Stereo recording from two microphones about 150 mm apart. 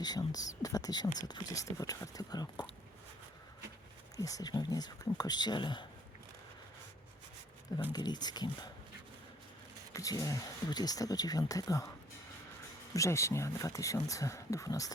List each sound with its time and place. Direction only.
0.0 s speech: 25° left (ahead or behind)
4.2 s speech: 25° left (ahead or behind)
7.9 s speech: 30° left (ahead or behind)
9.9 s speech: 25° left (ahead or behind)
12.9 s speech: 20° left (ahead or behind)